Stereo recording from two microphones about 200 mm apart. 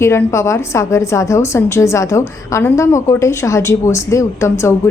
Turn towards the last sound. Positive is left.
turn(degrees=15)  # may be behind; listen again after turning